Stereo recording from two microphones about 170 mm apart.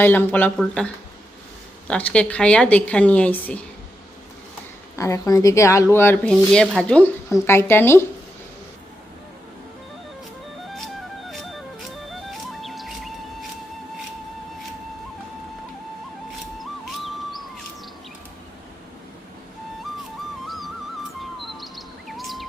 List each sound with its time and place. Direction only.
0.0 s speech: 10° left (ahead or behind)
1.9 s speech: 10° left (ahead or behind)
4.9 s speech: 20° left (ahead or behind)
12.3 s music: centre (ahead or behind)
16.6 s music: centre (ahead or behind)
21.2 s chirp: centre (ahead or behind)